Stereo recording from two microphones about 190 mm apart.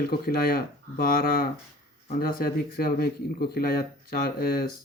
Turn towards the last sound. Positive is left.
turn(degrees=50)  # may be behind; listen again after turning